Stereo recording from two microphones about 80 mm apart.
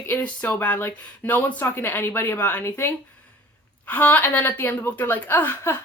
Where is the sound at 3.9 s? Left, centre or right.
Left.